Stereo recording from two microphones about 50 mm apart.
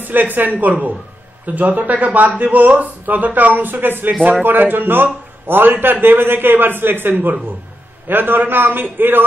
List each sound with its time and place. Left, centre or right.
0.0 s a man's voice: right